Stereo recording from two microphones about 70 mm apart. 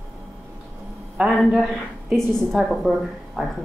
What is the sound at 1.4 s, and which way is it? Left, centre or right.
Speech, centre.